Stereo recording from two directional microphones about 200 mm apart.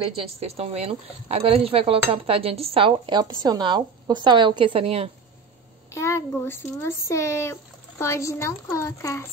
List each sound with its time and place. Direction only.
0.1 s speech: 30° right (ahead or behind)
5.9 s a child's voice: 15° left (ahead or behind)